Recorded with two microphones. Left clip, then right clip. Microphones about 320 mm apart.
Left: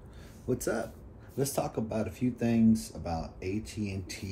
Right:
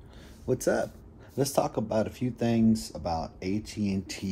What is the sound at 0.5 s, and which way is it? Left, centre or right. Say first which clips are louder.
Speech: right 5 dB; right.